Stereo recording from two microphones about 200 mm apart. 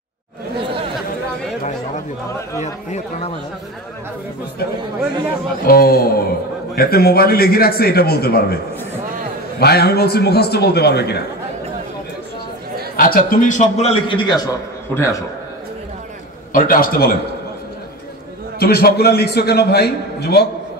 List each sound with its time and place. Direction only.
2.6 s a man's voice: 35° left (ahead or behind)
5.7 s speech: 50° left (ahead or behind)
9.6 s speech: 55° left (ahead or behind)
12.9 s a man's voice: 45° left (ahead or behind); by 15.2 s 15° left (ahead or behind)
16.5 s speech: 45° left (ahead or behind)
18.6 s speech: 50° left (ahead or behind)